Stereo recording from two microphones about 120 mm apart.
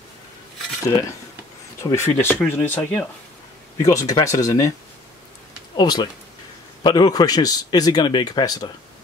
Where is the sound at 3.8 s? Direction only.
30° left (ahead or behind).